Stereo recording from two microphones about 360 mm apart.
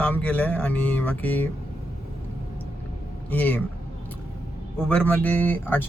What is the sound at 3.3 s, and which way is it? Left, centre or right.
Speech, centre.